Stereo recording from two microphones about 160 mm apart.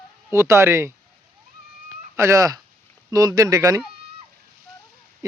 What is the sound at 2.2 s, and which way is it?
Speech, 20° right (ahead or behind).